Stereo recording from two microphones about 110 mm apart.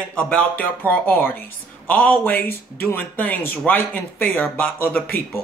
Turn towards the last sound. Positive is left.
turn(degrees=20)  # may be behind; listen again after turning